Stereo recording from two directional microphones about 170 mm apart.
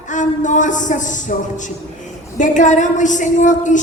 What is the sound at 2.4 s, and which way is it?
A woman's voice, 45° left (ahead or behind).